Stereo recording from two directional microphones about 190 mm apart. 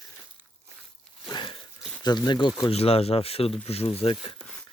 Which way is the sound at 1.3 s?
25° left (ahead or behind).